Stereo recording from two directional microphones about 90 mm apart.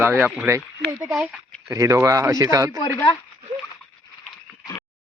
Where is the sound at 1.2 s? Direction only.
10° right (ahead or behind).